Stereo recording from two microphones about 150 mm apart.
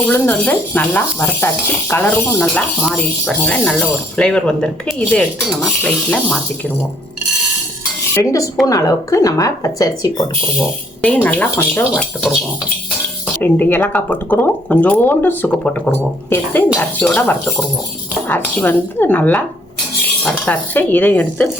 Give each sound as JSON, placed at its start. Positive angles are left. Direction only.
{"t": 0.1, "sound": "speech", "side_deg": 10}
{"t": 8.1, "sound": "speech", "side_deg": 20}
{"t": 11.0, "sound": "speech", "side_deg": 10}
{"t": 13.4, "sound": "speech", "side_deg": 15}